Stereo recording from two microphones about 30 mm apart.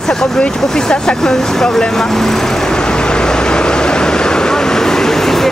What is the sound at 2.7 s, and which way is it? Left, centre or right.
Vehicle, left.